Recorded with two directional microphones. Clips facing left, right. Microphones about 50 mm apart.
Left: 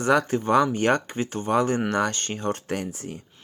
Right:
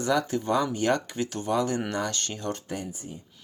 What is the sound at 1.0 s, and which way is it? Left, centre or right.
Speech, left.